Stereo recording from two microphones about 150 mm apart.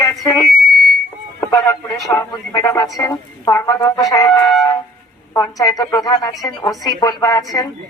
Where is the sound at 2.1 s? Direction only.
20° left (ahead or behind).